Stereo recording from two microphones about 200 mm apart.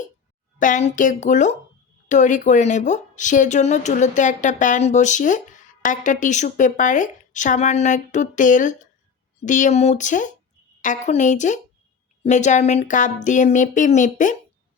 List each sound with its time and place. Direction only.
0.6 s speech: 35° left (ahead or behind)